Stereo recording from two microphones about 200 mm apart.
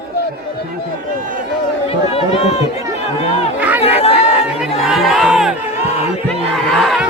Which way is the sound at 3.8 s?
30° left (ahead or behind).